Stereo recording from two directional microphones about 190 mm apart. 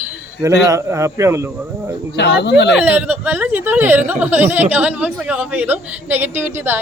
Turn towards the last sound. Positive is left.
turn(degrees=-10)  # may be behind; listen again after turning